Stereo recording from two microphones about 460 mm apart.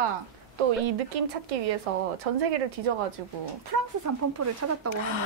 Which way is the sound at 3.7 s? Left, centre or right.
Right.